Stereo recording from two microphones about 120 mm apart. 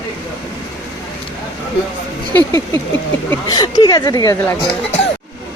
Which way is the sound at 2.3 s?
20° left (ahead or behind).